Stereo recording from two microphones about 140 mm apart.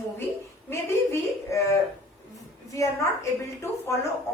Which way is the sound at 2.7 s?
20° left (ahead or behind).